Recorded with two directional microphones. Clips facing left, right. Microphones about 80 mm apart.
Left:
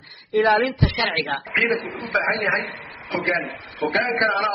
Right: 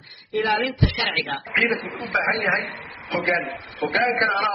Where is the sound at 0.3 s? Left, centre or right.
Left.